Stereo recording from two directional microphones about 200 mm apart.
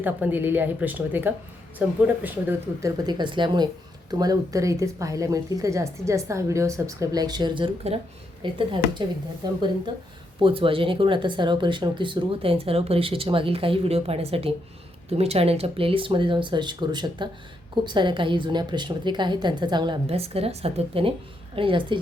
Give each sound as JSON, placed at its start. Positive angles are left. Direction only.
{"t": 0.0, "sound": "speech", "side_deg": -10}
{"t": 3.1, "sound": "speech", "side_deg": -20}